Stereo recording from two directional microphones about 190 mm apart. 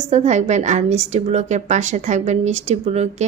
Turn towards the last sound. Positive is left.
turn(degrees=-35)  # may be behind; listen again after turning